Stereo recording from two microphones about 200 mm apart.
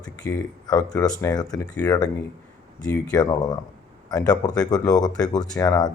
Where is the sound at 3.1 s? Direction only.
20° left (ahead or behind).